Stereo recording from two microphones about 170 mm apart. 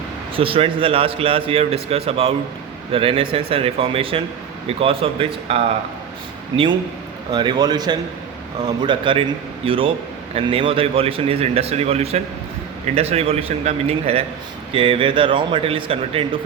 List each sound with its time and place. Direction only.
0.3 s a man's voice: 30° right (ahead or behind)
7.3 s a man's voice: 25° right (ahead or behind)